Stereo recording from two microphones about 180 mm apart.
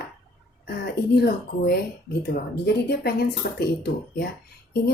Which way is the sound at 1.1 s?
60° left (ahead or behind).